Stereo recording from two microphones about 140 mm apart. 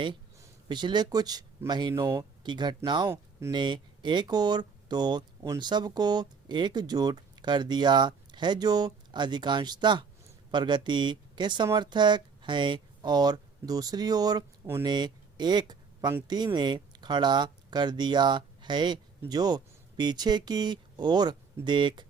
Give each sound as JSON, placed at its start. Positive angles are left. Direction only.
{"t": 0.3, "sound": "speech", "side_deg": -30}